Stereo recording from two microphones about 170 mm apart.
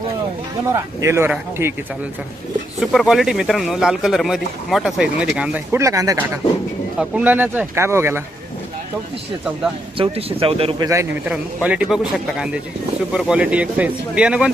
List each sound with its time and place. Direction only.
0.7 s speech: 15° right (ahead or behind)
2.8 s speech: centre (ahead or behind); by 6.4 s 15° right (ahead or behind)
7.0 s speech: 5° right (ahead or behind)
10.0 s speech: 35° right (ahead or behind)
11.3 s speech: 5° right (ahead or behind)
13.1 s speech: 5° right (ahead or behind)